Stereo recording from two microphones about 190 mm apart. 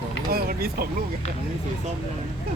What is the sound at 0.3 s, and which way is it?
Speech, 55° right (ahead or behind).